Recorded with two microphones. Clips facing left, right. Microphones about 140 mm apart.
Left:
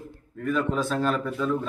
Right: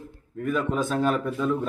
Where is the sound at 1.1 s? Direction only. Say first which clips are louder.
Right 1 dB; 15° right (ahead or behind).